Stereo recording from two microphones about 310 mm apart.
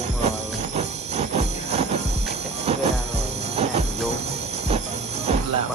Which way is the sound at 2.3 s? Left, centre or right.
Right.